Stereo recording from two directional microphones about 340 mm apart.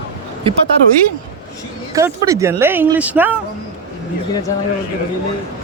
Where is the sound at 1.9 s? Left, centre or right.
Centre.